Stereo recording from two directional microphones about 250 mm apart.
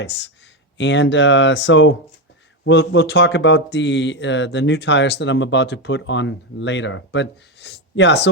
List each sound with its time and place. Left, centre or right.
0.8 s speech: left